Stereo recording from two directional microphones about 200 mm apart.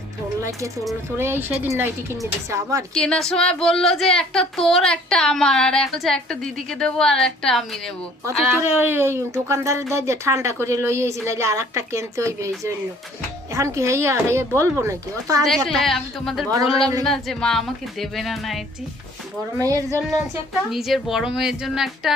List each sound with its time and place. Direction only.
1.2 s a woman's voice: 10° right (ahead or behind)
2.9 s speech: 5° left (ahead or behind)
8.7 s a woman's voice: 10° right (ahead or behind)
15.4 s speech: centre (ahead or behind)
19.5 s a woman's voice: 15° right (ahead or behind)
20.7 s speech: centre (ahead or behind)